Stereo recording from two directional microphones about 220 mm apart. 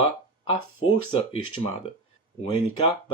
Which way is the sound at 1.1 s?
25° left (ahead or behind).